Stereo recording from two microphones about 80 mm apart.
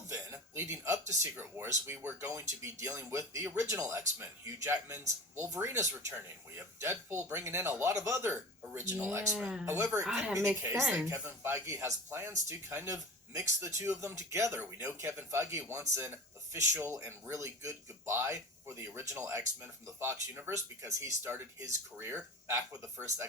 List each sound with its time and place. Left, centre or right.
0.1 s speech: right
9.3 s speech: centre
9.6 s speech: right
10.1 s speech: centre
10.5 s a woman's voice: right